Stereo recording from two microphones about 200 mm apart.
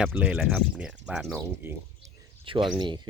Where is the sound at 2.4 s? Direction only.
25° right (ahead or behind).